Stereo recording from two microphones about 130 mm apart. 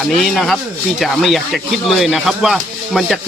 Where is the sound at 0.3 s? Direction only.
Centre (ahead or behind).